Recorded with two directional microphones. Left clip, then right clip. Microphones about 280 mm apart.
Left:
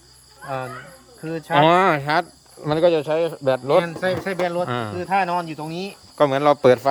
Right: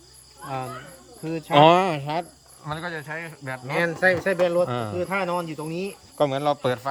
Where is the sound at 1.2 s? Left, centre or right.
Centre.